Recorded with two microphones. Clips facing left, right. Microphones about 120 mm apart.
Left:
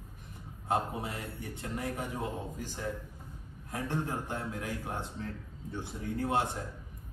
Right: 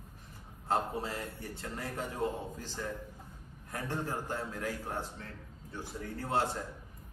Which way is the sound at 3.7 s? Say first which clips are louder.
Left 2 dB; 20° left (ahead or behind).